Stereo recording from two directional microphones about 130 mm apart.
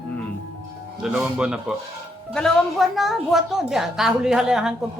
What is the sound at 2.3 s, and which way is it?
A woman's voice, 5° left (ahead or behind).